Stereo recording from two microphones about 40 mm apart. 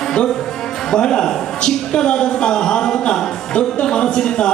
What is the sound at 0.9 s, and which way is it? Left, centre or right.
A woman's voice, centre.